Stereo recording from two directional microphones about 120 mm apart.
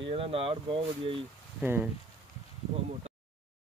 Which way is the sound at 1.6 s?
15° right (ahead or behind).